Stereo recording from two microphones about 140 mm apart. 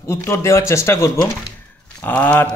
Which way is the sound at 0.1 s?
20° left (ahead or behind).